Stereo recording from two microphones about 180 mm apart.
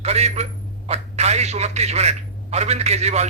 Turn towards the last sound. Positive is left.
turn(degrees=-40)  # may be behind; listen again after turning